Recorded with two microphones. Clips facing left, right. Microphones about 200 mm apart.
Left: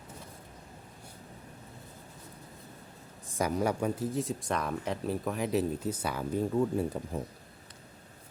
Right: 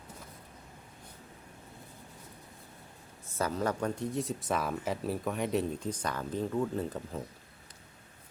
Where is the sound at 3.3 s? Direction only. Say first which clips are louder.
Left 2 dB; 15° left (ahead or behind).